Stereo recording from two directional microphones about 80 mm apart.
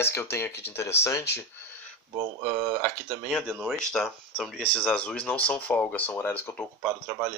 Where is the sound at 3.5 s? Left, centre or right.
Centre.